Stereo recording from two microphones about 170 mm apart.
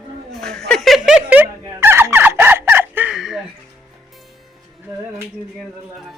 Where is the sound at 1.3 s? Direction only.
10° right (ahead or behind).